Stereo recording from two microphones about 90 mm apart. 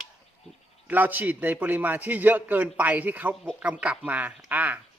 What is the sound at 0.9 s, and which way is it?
A man's voice, 20° right (ahead or behind).